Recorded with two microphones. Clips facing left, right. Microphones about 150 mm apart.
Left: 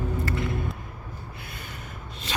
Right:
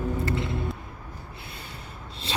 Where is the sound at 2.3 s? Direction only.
30° right (ahead or behind).